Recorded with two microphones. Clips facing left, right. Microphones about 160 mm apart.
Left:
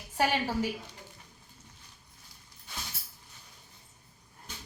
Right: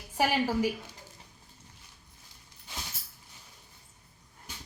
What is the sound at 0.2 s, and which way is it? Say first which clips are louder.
Speech: right 2 dB; 10° right (ahead or behind).